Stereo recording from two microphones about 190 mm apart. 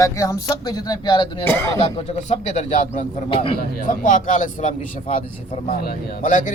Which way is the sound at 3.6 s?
45° left (ahead or behind).